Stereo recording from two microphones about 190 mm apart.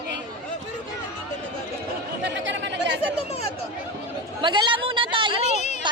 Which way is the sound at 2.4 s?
70° right (ahead or behind).